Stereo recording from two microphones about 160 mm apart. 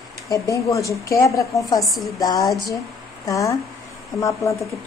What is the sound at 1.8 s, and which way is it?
Speech, centre (ahead or behind).